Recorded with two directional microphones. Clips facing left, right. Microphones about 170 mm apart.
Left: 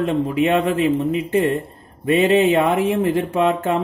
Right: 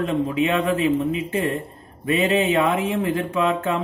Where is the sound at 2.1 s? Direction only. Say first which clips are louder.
Left 4 dB; 30° left (ahead or behind).